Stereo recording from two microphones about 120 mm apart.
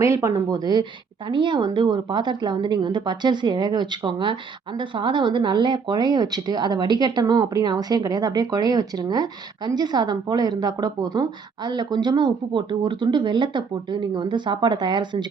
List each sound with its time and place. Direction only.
0.0 s speech: 25° right (ahead or behind)